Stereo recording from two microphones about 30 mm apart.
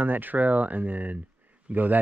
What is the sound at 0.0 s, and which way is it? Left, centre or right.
Speech, right.